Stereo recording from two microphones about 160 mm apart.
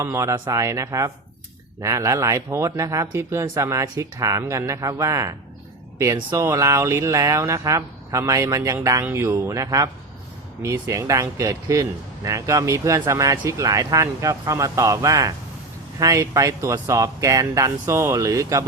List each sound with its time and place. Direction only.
0.0 s speech: 20° right (ahead or behind)